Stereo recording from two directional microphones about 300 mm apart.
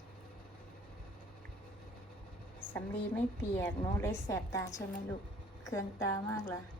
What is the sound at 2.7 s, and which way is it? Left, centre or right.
A woman's voice, centre.